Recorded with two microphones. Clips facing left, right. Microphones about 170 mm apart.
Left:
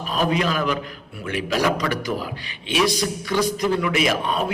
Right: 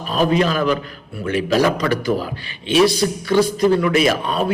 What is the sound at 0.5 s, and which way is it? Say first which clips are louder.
Speech: right 5 dB; 15° left (ahead or behind).